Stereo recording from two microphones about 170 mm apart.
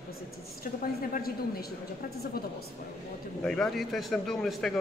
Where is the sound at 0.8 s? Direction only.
60° left (ahead or behind).